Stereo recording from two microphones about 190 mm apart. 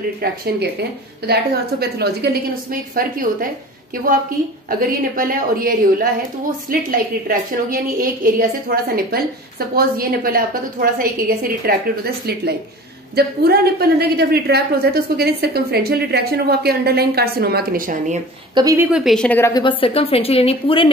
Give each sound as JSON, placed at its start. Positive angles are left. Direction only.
{"t": 0.2, "sound": "a woman's voice", "side_deg": -55}
{"t": 4.6, "sound": "a woman's voice", "side_deg": -45}
{"t": 18.5, "sound": "speech", "side_deg": -20}
{"t": 18.9, "sound": "a woman's voice", "side_deg": -5}
{"t": 19.8, "sound": "a woman's voice", "side_deg": 30}